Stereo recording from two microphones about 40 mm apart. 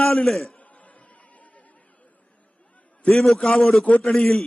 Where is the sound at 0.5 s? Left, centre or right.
Left.